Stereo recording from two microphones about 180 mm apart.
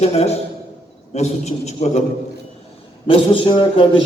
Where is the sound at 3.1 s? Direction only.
30° left (ahead or behind).